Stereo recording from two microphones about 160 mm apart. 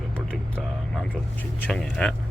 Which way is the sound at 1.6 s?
5° left (ahead or behind).